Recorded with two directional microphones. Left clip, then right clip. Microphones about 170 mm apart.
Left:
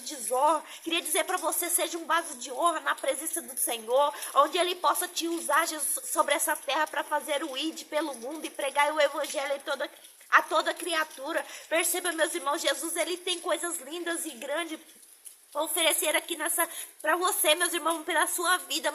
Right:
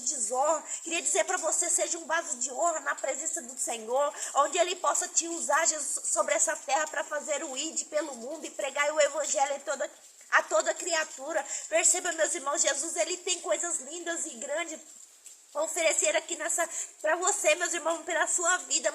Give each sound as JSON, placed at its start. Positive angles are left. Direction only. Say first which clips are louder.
{"t": 0.3, "sound": "a woman's voice", "louder": "left 3 dB", "side_deg": 20}